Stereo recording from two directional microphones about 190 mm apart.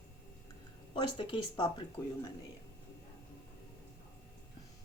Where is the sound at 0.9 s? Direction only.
25° left (ahead or behind).